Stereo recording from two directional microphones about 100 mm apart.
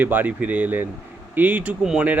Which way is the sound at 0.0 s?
20° right (ahead or behind).